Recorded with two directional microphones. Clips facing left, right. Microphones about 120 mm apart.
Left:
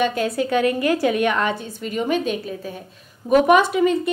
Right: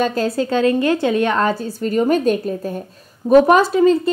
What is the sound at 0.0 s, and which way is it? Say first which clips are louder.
A woman's voice: right 2 dB; 35° right (ahead or behind).